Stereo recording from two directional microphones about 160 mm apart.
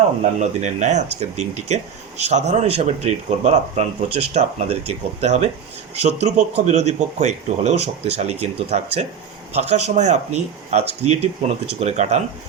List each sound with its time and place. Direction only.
0.3 s speech: 45° right (ahead or behind)